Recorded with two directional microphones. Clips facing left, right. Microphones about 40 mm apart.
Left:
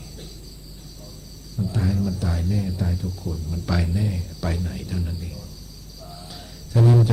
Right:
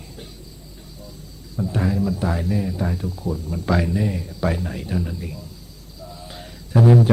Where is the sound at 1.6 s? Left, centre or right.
Right.